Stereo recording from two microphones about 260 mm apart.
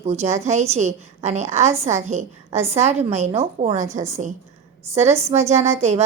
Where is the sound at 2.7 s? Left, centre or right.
Right.